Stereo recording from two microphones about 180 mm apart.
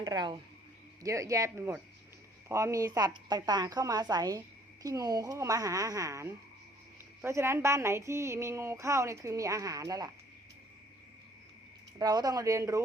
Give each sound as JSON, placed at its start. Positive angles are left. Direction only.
{"t": 0.0, "sound": "a woman's voice", "side_deg": -25}
{"t": 11.9, "sound": "a woman's voice", "side_deg": -20}